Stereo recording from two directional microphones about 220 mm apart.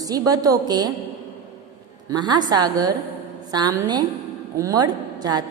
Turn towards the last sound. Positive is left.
turn(degrees=-20)  # may be behind; listen again after turning